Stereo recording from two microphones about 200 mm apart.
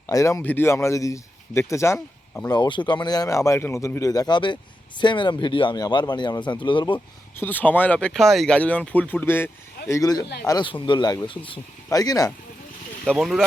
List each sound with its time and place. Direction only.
0.1 s a man's voice: 15° left (ahead or behind)
7.3 s a man's voice: 10° left (ahead or behind)
13.1 s speech: centre (ahead or behind)